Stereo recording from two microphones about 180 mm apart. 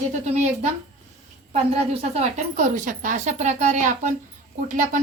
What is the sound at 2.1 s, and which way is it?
A woman's voice, 40° right (ahead or behind).